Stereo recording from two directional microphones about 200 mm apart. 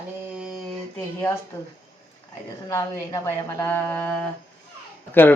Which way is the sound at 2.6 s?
15° left (ahead or behind).